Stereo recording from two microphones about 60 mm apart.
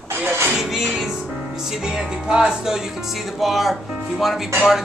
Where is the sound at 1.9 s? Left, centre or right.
Centre.